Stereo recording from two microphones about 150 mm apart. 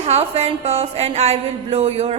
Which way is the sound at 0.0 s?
45° right (ahead or behind).